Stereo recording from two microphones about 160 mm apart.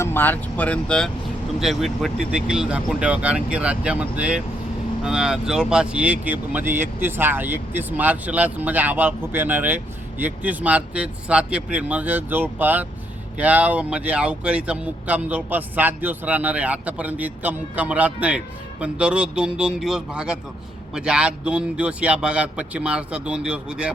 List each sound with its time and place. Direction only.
0.0 s speech: 15° left (ahead or behind); by 23.9 s 5° right (ahead or behind)